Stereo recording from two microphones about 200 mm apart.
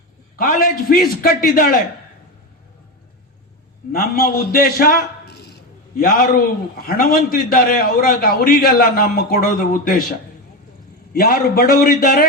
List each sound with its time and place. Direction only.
0.3 s a man's voice: 45° left (ahead or behind)
3.9 s a man's voice: 50° left (ahead or behind)